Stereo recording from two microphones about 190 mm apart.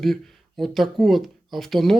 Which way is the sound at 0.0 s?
Centre (ahead or behind).